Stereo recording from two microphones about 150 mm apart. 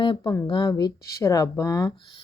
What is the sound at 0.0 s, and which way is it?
Speech, 30° left (ahead or behind).